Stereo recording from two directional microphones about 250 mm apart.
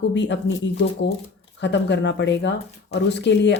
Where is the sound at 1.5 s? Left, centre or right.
Left.